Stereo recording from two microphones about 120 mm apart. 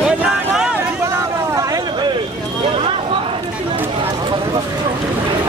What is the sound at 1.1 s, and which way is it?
Vehicle, 30° right (ahead or behind).